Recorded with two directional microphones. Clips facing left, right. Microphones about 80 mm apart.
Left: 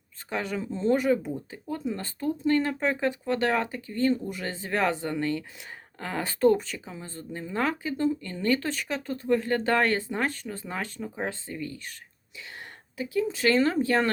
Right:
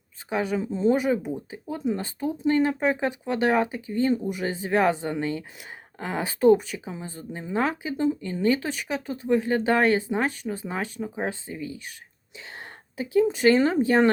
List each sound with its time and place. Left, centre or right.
0.3 s speech: centre
13.3 s speech: right